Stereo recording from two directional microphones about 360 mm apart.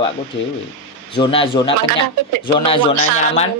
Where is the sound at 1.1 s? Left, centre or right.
Centre.